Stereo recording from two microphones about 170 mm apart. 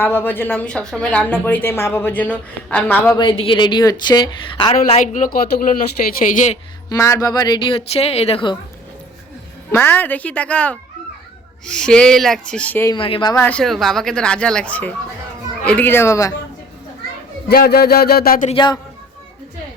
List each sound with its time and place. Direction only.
0.0 s a woman's voice: 15° left (ahead or behind)
3.2 s a woman's voice: 30° left (ahead or behind); by 6.6 s 50° left (ahead or behind)
6.9 s a woman's voice: 20° left (ahead or behind)
9.7 s a woman's voice: 10° left (ahead or behind)
12.9 s speech: 30° left (ahead or behind)
13.3 s a woman's voice: 10° left (ahead or behind)
17.5 s a sound: 65° left (ahead or behind)
18.4 s a woman's voice: 30° left (ahead or behind)